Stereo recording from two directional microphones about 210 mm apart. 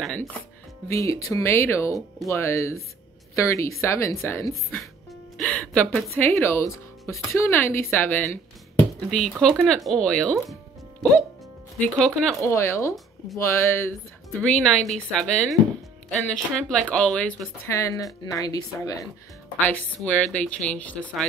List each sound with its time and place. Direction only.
0.0 s speech: centre (ahead or behind)
0.8 s a woman's voice: 15° left (ahead or behind)
5.4 s music: 5° left (ahead or behind)
6.1 s a woman's voice: 10° left (ahead or behind)
10.5 s music: centre (ahead or behind)
12.0 s speech: centre (ahead or behind)
12.4 s a woman's voice: 15° left (ahead or behind)
20.2 s speech: 5° left (ahead or behind)